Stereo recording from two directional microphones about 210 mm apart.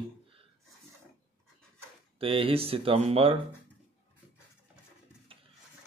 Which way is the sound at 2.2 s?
25° right (ahead or behind).